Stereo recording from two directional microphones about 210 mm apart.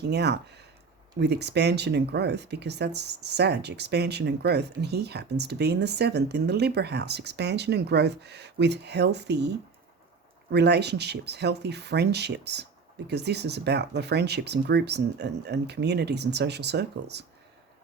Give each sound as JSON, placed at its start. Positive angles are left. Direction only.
{"t": 0.0, "sound": "speech", "side_deg": -55}